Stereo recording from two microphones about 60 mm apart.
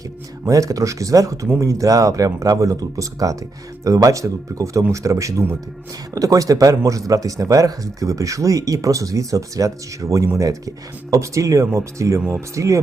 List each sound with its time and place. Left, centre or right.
0.4 s speech: right
6.1 s speech: right